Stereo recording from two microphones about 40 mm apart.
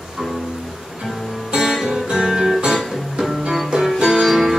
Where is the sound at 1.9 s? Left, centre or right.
Centre.